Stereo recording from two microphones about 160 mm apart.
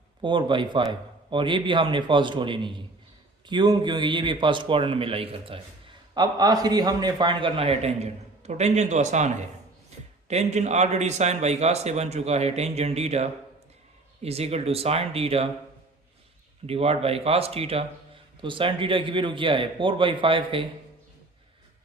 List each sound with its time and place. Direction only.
0.2 s a man's voice: 30° right (ahead or behind)
6.1 s a man's voice: 25° right (ahead or behind)
16.6 s a man's voice: 40° right (ahead or behind)